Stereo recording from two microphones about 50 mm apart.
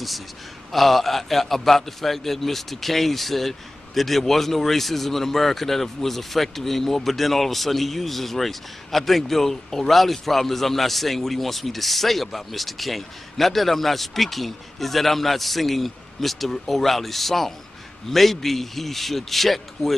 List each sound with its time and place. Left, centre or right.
0.7 s a man's voice: centre